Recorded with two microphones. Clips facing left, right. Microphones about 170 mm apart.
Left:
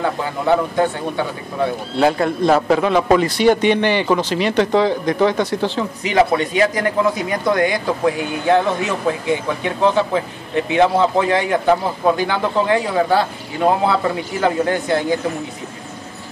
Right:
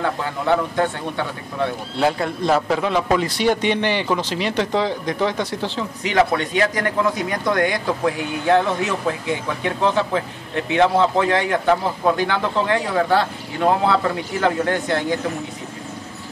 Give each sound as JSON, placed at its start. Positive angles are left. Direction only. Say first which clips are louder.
{"t": 0.0, "sound": "a man's voice", "louder": "left 3 dB", "side_deg": 10}
{"t": 2.0, "sound": "a man's voice", "louder": "left 4 dB", "side_deg": 55}
{"t": 6.0, "sound": "a man's voice", "louder": "left 2 dB", "side_deg": 10}